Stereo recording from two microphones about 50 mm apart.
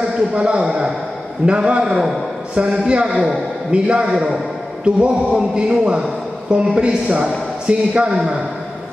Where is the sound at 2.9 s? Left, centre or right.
Right.